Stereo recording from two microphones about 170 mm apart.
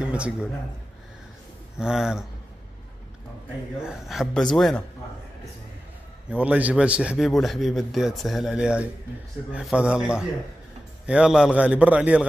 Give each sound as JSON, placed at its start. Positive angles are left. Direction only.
{"t": 0.0, "sound": "a man's voice", "side_deg": -5}
{"t": 1.8, "sound": "a man's voice", "side_deg": -5}
{"t": 3.8, "sound": "a man's voice", "side_deg": 0}
{"t": 6.3, "sound": "a man's voice", "side_deg": -10}